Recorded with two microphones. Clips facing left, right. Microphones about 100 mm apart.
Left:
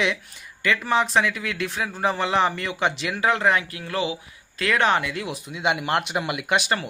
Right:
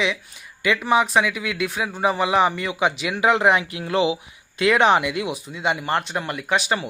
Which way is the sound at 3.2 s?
20° right (ahead or behind).